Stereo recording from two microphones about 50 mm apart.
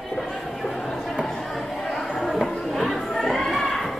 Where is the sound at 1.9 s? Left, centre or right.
Centre.